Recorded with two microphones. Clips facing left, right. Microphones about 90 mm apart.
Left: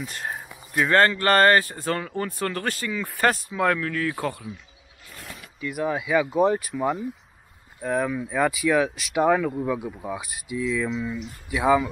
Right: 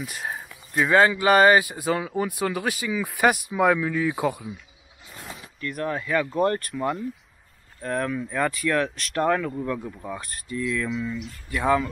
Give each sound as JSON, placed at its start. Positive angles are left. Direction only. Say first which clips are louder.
{"t": 0.0, "sound": "speech", "louder": "even", "side_deg": -5}
{"t": 5.6, "sound": "speech", "louder": "left 2 dB", "side_deg": 5}